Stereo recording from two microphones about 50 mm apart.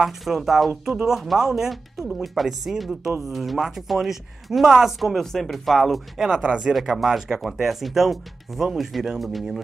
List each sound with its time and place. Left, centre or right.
0.0 s speech: centre
5.1 s speech: centre
6.4 s speech: centre
6.7 s speech: centre